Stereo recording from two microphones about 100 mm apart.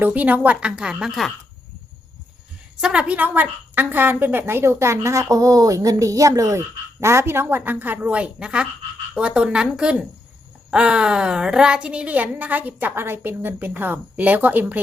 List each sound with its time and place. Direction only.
0.0 s a woman's voice: 15° right (ahead or behind)
2.8 s a woman's voice: 10° right (ahead or behind)